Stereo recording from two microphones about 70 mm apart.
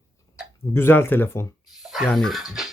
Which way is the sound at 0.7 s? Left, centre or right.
Left.